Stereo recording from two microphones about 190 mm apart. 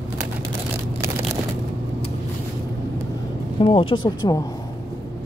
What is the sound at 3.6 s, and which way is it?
Speech, 25° left (ahead or behind).